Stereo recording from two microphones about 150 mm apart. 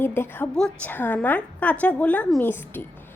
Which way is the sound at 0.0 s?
15° left (ahead or behind).